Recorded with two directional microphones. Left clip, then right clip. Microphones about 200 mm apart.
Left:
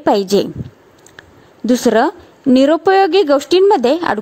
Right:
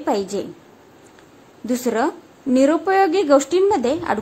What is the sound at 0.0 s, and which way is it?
Speech, 40° left (ahead or behind).